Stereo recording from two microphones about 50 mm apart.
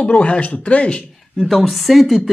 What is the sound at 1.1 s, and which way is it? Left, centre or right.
A woman's voice, centre.